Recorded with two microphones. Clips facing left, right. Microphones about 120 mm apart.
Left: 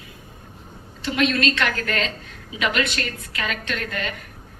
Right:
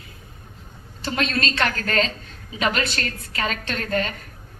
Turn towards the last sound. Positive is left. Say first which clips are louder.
# right 3 dB
turn(degrees=-35)  # may be behind; listen again after turning